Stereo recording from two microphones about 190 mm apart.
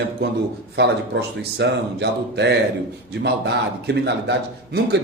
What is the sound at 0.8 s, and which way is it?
A man's voice, 65° right (ahead or behind).